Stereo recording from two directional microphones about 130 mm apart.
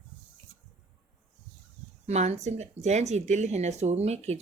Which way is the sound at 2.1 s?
55° right (ahead or behind).